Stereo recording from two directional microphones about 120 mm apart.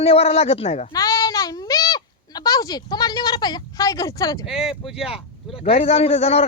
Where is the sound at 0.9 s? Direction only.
30° left (ahead or behind).